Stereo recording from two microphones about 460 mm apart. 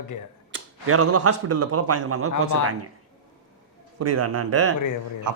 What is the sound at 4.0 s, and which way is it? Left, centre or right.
Speech, right.